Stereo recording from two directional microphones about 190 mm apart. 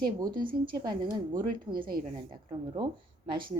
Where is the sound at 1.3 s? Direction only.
50° right (ahead or behind).